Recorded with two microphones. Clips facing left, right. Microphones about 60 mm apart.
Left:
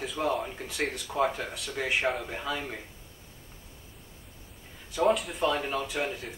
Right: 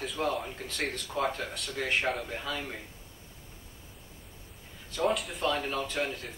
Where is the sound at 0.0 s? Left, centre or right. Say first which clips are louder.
Left 2 dB; centre.